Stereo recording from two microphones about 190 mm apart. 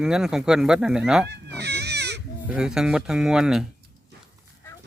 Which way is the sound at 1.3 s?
60° right (ahead or behind).